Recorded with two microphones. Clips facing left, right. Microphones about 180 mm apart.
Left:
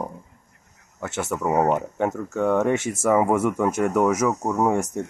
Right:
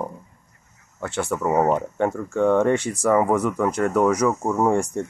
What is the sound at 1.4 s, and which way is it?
Speech, 10° left (ahead or behind).